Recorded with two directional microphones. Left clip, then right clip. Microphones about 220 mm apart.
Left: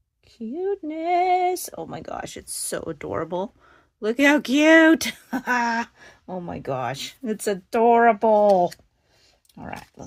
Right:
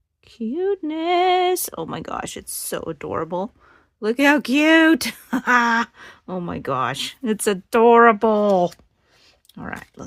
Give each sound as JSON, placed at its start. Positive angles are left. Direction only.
{"t": 0.3, "sound": "speech", "side_deg": -45}
{"t": 5.3, "sound": "speech", "side_deg": -35}
{"t": 9.6, "sound": "speech", "side_deg": -45}